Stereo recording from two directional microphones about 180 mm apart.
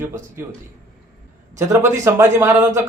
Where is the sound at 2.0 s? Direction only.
15° right (ahead or behind).